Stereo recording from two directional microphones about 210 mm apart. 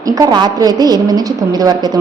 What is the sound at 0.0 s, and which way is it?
A woman's voice, 15° right (ahead or behind).